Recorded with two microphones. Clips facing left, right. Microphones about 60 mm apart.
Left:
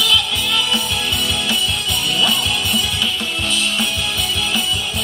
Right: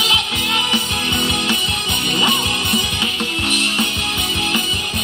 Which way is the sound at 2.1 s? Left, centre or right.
Right.